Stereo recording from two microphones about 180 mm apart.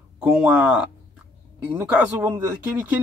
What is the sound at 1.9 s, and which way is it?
Speech, 15° right (ahead or behind).